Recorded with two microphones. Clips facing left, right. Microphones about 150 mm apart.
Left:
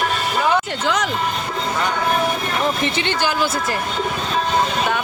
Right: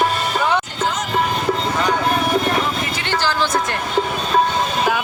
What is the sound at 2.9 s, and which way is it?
Speech, 20° left (ahead or behind).